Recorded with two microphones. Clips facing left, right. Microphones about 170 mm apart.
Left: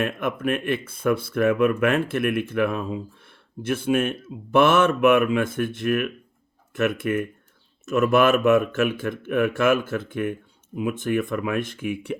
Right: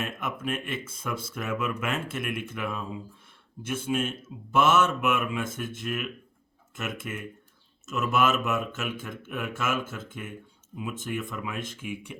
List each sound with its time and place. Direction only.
0.0 s speech: 60° left (ahead or behind)